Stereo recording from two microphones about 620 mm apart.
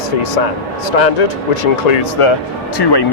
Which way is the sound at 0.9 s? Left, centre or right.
Left.